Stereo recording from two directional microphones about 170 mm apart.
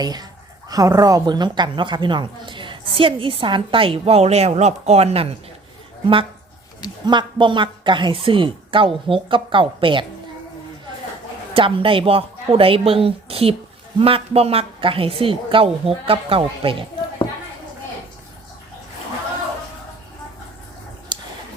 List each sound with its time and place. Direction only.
0.0 s a woman's voice: 25° right (ahead or behind)
7.0 s a woman's voice: 25° right (ahead or behind)
11.5 s a woman's voice: 30° right (ahead or behind)
21.1 s a sound: 25° right (ahead or behind)